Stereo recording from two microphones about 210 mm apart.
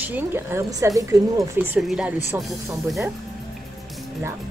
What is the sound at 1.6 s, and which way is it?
Speech, 5° right (ahead or behind).